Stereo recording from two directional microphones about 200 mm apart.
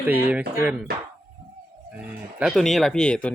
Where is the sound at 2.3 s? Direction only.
Centre (ahead or behind).